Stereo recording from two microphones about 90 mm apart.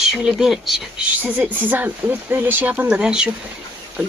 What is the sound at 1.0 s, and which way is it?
Speech, 20° right (ahead or behind).